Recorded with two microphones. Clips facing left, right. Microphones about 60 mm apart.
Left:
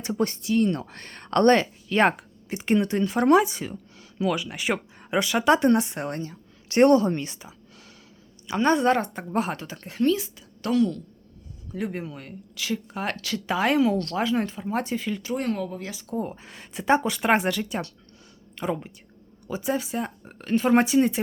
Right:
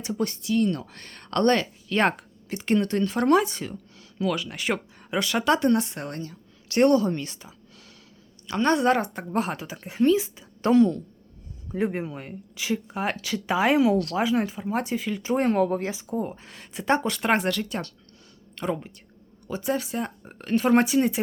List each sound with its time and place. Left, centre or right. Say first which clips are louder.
0.0 s speech: left 2 dB; left
1.9 s speech: left 2 dB; centre
4.9 s a sound: left 2 dB; left
5.3 s speech: left 2 dB; centre
5.5 s a woman's voice: left 2 dB; left
8.4 s a woman's voice: left 1 dB; centre
15.2 s speech: right 5 dB; right
15.9 s speech: right 5 dB; right
16.1 s a woman's voice: right 1 dB; centre